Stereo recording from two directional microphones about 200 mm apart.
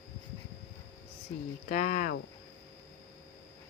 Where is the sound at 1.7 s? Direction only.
40° left (ahead or behind).